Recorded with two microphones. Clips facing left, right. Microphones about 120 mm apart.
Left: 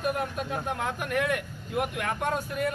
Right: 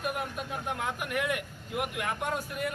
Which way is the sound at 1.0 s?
15° right (ahead or behind).